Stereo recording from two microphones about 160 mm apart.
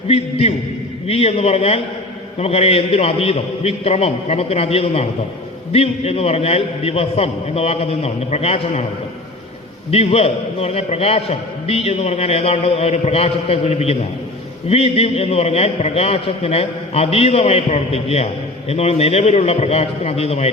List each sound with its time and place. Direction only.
0.1 s a man's voice: 40° left (ahead or behind)
9.9 s a man's voice: 40° left (ahead or behind)